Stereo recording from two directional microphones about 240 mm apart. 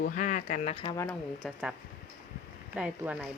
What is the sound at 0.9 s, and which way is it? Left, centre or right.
Speech, centre.